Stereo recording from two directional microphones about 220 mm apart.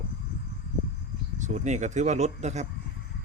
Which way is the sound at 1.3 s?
30° right (ahead or behind).